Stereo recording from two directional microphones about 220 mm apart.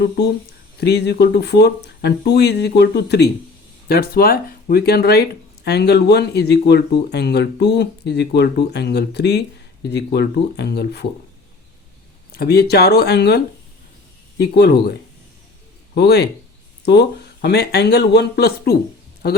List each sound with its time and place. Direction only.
0.8 s speech: 50° left (ahead or behind)
12.3 s speech: 45° left (ahead or behind)
16.0 s speech: 50° left (ahead or behind)